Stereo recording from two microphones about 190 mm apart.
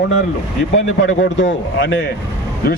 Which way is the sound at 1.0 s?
75° left (ahead or behind).